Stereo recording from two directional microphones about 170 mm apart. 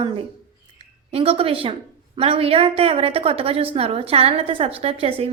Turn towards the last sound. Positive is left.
turn(degrees=-35)  # may be behind; listen again after turning